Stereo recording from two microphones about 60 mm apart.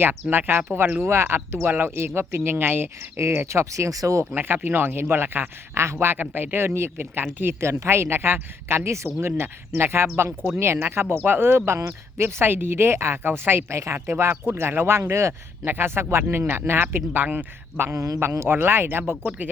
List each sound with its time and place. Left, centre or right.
0.0 s speech: right
1.0 s speech: right
3.4 s speech: right
4.4 s speech: right
13.7 s speech: right
17.9 s speech: right
18.2 s speech: right